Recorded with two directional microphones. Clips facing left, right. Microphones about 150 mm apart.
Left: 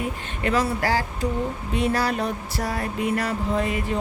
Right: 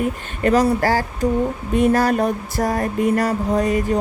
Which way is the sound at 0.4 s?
45° right (ahead or behind).